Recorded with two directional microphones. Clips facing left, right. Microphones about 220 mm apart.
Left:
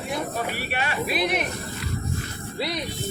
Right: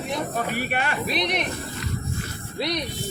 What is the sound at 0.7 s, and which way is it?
Speech, 50° right (ahead or behind).